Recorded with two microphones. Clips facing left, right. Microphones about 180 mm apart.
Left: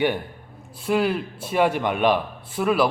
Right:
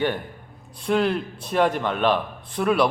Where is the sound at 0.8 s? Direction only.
5° left (ahead or behind).